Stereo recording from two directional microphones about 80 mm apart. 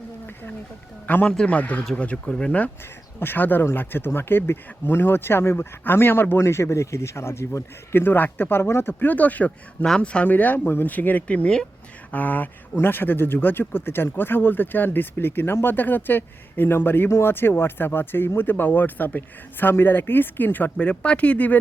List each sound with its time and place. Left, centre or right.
1.0 s speech: centre
3.2 s speech: left